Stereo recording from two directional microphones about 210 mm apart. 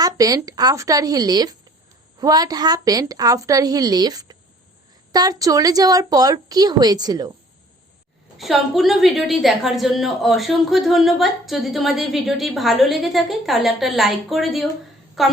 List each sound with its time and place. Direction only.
0.0 s a woman's voice: 15° right (ahead or behind)
8.4 s a woman's voice: centre (ahead or behind)